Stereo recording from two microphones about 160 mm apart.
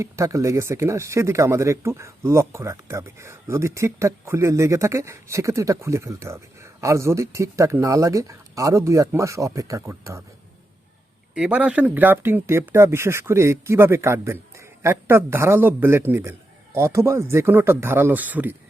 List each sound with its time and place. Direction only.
0.0 s speech: 20° right (ahead or behind)
11.3 s speech: 5° right (ahead or behind)